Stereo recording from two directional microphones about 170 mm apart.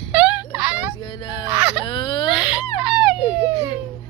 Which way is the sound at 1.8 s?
30° left (ahead or behind).